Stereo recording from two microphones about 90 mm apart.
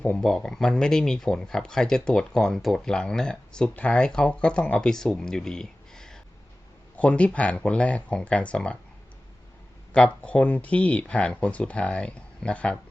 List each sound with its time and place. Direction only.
0.2 s speech: 5° left (ahead or behind)
9.9 s speech: 10° left (ahead or behind)